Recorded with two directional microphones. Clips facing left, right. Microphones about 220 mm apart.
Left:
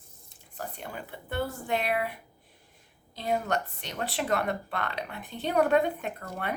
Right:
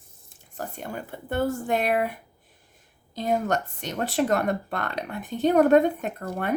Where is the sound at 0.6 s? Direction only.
45° right (ahead or behind).